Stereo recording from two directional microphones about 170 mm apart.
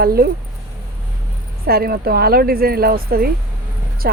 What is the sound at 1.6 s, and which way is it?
A woman's voice, 65° right (ahead or behind).